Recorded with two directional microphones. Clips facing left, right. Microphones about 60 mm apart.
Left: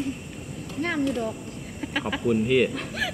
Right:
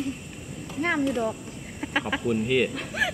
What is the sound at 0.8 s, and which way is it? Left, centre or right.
Speech, centre.